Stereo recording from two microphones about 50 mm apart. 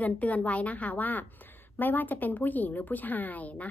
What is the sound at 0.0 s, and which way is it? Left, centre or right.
A woman's voice, left.